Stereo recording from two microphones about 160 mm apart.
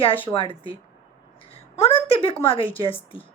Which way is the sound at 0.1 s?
10° left (ahead or behind).